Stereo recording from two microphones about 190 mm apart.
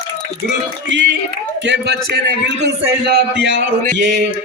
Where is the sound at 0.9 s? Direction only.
70° right (ahead or behind).